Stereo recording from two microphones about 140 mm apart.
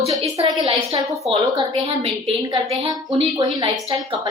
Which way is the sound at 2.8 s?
30° right (ahead or behind).